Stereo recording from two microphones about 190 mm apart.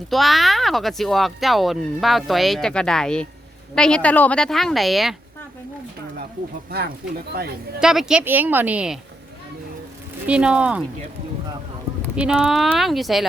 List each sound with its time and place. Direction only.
0.1 s speech: centre (ahead or behind)
6.7 s speech: 55° right (ahead or behind)
7.8 s speech: 5° right (ahead or behind)
10.2 s speech: 5° right (ahead or behind)
12.1 s speech: 5° right (ahead or behind)